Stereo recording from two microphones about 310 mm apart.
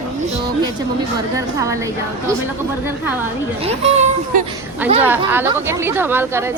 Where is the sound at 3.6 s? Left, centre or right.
Centre.